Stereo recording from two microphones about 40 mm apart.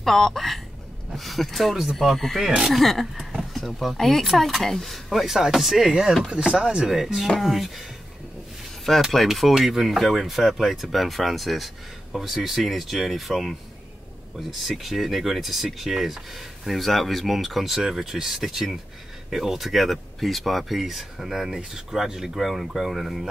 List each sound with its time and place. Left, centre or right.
0.0 s speech: centre
5.2 s speech: centre
6.3 s speech: right
6.9 s speech: centre
8.9 s speech: centre
9.3 s speech: centre
14.8 s speech: centre